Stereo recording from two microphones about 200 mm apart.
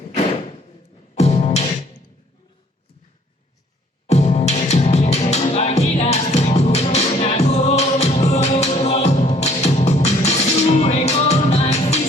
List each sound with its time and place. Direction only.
1.1 s music: 35° left (ahead or behind)
4.0 s music: 30° left (ahead or behind)